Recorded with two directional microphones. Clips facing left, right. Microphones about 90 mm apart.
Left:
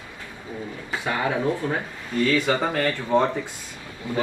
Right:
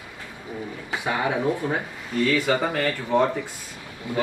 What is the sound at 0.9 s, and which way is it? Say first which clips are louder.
Speech: even; 15° right (ahead or behind).